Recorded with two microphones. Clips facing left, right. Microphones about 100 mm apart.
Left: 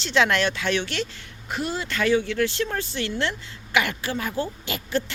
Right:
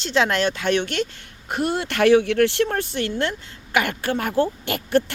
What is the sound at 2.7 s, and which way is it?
A woman's voice, 50° right (ahead or behind).